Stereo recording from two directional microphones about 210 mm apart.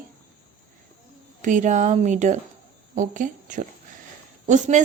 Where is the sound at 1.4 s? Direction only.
35° right (ahead or behind).